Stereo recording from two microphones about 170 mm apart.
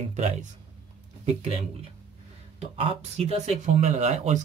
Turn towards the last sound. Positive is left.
turn(degrees=-40)  # may be behind; listen again after turning